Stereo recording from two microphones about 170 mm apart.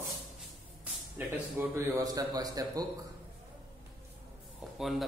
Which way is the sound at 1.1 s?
10° right (ahead or behind).